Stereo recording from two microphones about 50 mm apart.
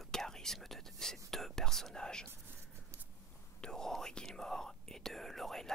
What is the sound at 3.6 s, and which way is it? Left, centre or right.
Speech, centre.